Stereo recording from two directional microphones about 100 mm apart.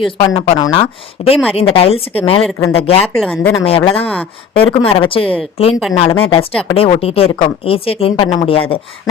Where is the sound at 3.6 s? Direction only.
65° left (ahead or behind).